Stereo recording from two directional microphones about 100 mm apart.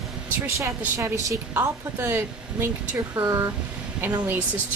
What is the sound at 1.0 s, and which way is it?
Speech, 30° right (ahead or behind).